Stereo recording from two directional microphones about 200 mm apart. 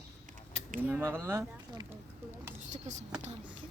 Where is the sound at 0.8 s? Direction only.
10° right (ahead or behind).